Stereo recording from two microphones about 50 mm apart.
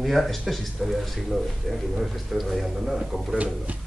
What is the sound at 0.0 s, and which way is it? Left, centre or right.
Speech, centre.